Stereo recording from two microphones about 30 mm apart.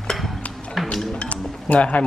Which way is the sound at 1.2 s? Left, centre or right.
Left.